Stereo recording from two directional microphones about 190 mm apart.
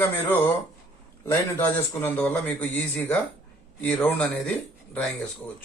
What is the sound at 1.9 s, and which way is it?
A man's voice, 10° left (ahead or behind).